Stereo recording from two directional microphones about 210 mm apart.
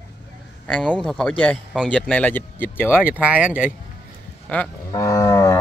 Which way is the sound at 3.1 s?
5° right (ahead or behind).